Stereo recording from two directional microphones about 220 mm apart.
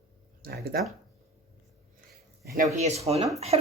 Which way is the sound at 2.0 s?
40° right (ahead or behind).